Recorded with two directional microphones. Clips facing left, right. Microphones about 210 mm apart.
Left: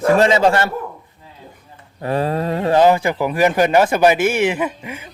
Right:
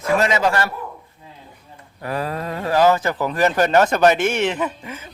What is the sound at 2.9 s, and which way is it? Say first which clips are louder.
Speech: left 3 dB; 10° left (ahead or behind).